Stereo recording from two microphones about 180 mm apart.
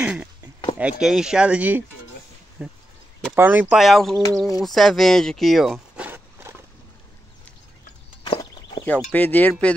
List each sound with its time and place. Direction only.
0.0 s speech: 5° right (ahead or behind)
8.2 s walk: 25° left (ahead or behind)
8.8 s speech: 10° left (ahead or behind)